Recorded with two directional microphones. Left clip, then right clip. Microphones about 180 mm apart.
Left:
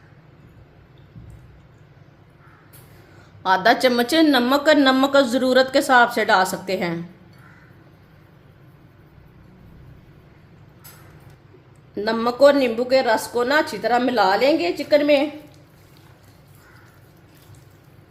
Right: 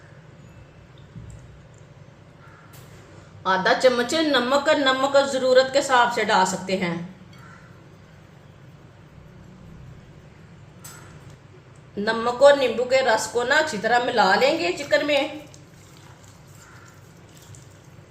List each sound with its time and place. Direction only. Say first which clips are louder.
3.4 s a woman's voice: left 2 dB; 55° left (ahead or behind)
11.9 s speech: left 2 dB; 50° left (ahead or behind)